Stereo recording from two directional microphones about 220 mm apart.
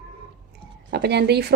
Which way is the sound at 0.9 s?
50° right (ahead or behind).